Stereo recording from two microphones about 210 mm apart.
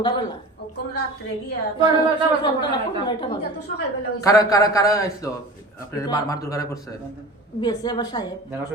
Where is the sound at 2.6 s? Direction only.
20° left (ahead or behind).